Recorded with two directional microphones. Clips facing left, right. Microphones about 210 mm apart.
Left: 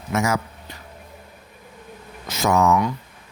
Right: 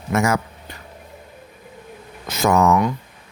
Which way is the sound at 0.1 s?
55° right (ahead or behind).